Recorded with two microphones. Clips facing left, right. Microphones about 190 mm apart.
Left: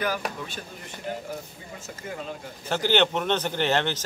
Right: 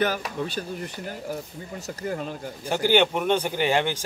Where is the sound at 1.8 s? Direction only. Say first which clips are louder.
Right 6 dB; 40° right (ahead or behind).